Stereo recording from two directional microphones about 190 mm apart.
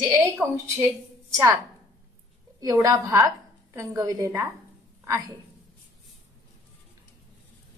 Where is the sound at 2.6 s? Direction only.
20° right (ahead or behind).